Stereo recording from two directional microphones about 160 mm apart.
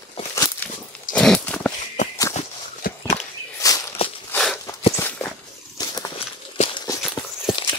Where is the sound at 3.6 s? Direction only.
20° left (ahead or behind).